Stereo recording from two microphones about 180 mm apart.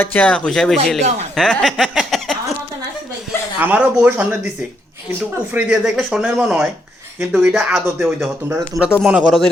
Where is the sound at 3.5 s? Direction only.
10° right (ahead or behind).